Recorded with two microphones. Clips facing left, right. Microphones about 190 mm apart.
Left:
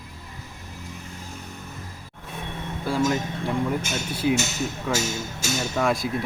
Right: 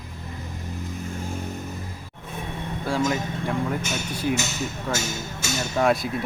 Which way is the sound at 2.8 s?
Centre (ahead or behind).